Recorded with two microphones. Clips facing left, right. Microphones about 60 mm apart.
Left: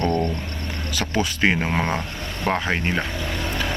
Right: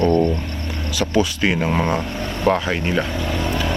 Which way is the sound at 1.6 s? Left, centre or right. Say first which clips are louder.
Right 4 dB; left.